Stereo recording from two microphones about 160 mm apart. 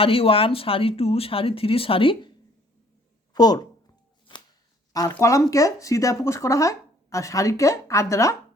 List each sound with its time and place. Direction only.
0.0 s speech: 35° left (ahead or behind)
3.3 s a sound: 25° left (ahead or behind)
5.2 s speech: 20° left (ahead or behind)